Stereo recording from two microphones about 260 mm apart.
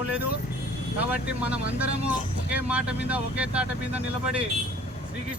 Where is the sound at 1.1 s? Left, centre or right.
Centre.